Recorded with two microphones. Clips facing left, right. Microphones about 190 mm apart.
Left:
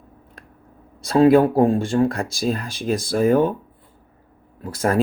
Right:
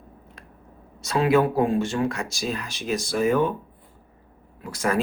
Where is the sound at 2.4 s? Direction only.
50° left (ahead or behind).